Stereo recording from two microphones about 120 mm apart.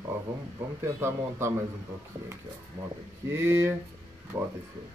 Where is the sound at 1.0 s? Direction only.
25° right (ahead or behind).